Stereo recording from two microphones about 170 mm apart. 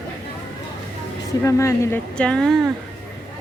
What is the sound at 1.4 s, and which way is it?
Speech, 15° left (ahead or behind).